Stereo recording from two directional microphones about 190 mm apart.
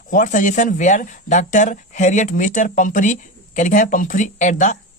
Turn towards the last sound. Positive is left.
turn(degrees=40)  # may be behind; listen again after turning